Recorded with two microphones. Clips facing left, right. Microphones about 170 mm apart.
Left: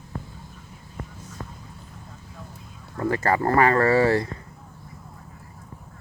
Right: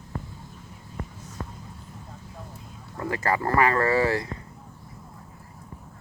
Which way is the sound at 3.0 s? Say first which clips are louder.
Left 4 dB; 35° left (ahead or behind).